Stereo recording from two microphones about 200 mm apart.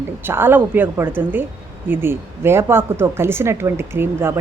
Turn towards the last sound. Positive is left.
turn(degrees=-10)  # may be behind; listen again after turning